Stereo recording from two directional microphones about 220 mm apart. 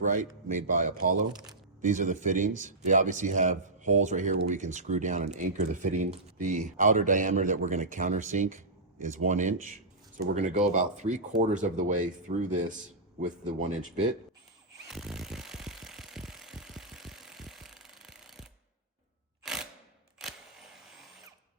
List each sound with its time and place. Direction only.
0.1 s speech: 35° right (ahead or behind)
14.8 s vehicle: centre (ahead or behind)
19.4 s mechanisms: centre (ahead or behind)
20.2 s camera: centre (ahead or behind)